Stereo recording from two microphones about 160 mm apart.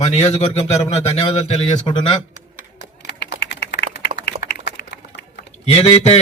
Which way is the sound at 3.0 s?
90° left.